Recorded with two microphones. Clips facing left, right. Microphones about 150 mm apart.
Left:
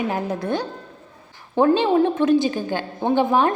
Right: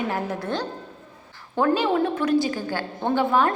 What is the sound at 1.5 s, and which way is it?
A woman's voice, 25° left (ahead or behind).